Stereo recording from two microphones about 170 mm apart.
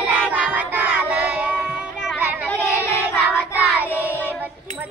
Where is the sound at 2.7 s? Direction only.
15° left (ahead or behind).